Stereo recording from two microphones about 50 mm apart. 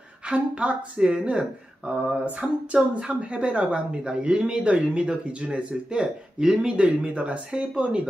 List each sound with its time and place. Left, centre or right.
0.3 s speech: right